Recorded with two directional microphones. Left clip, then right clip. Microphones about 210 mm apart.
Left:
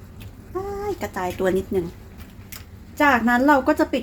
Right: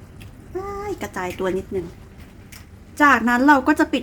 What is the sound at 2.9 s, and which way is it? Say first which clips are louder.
A woman's voice: right 2 dB; 20° right (ahead or behind).